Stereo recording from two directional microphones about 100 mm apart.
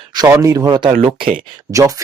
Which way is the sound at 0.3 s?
40° right (ahead or behind).